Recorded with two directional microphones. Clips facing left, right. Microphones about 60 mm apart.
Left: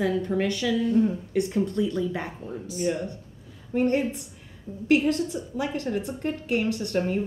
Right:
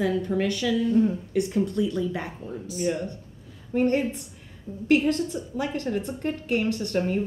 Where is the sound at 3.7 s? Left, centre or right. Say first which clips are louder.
Right 1 dB; centre.